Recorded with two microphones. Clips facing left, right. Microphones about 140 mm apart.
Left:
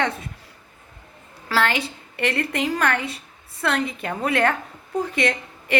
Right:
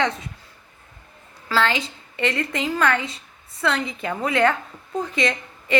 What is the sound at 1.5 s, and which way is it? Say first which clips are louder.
A woman's voice: even; 60° left (ahead or behind).